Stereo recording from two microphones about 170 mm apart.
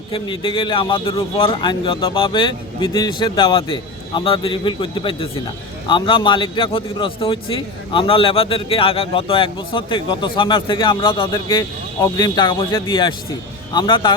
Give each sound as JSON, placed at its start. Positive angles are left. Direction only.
{"t": 0.1, "sound": "a man's voice", "side_deg": 30}